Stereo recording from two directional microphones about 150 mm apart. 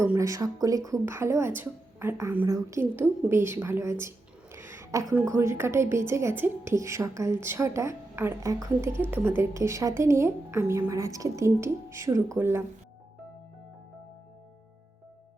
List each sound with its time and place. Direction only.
0.0 s a woman's voice: 20° right (ahead or behind)
4.5 s a sound: 15° right (ahead or behind)
5.2 s a woman's voice: 20° right (ahead or behind)